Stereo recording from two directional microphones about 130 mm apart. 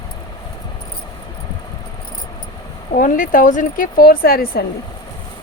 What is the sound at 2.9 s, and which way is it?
Speech, 90° left.